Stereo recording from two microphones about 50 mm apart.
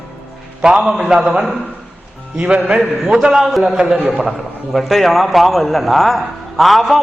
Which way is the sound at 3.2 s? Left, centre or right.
Centre.